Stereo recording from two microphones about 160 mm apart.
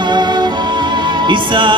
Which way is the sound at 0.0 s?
30° right (ahead or behind).